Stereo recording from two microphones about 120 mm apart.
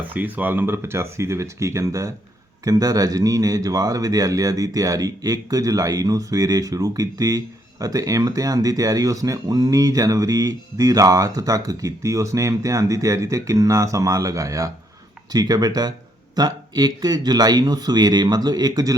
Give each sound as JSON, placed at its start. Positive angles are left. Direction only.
{"t": 0.1, "sound": "a man's voice", "side_deg": -15}